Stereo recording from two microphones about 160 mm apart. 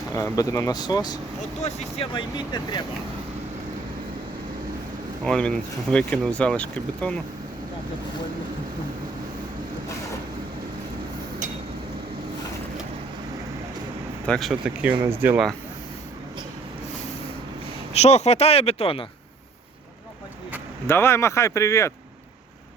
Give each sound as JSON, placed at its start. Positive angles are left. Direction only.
{"t": 0.1, "sound": "speech", "side_deg": 20}
{"t": 1.4, "sound": "speech", "side_deg": 45}
{"t": 2.1, "sound": "speech", "side_deg": 30}
{"t": 5.2, "sound": "speech", "side_deg": 5}
{"t": 14.3, "sound": "speech", "side_deg": 0}
{"t": 15.0, "sound": "speech", "side_deg": -15}
{"t": 17.9, "sound": "speech", "side_deg": 45}
{"t": 20.8, "sound": "speech", "side_deg": 15}